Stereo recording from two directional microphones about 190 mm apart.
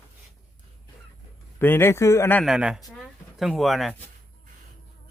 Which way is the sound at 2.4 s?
5° right (ahead or behind).